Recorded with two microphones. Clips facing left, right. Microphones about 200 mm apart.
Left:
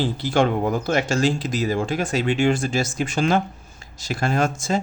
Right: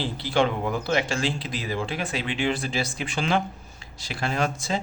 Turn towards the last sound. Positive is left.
turn(degrees=45)  # may be behind; listen again after turning